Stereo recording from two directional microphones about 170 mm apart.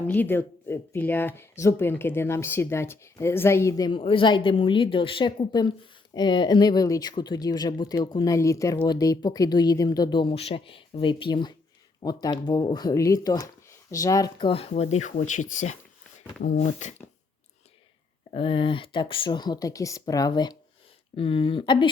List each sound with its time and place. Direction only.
0.1 s speech: 10° left (ahead or behind); by 16.9 s 45° left (ahead or behind)
18.3 s speech: 30° left (ahead or behind)